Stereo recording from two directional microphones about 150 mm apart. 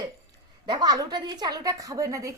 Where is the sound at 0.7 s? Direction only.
25° right (ahead or behind).